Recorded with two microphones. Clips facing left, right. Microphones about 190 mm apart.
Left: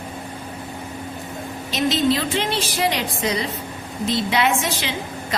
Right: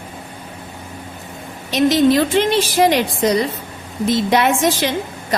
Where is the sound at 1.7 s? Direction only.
55° right (ahead or behind).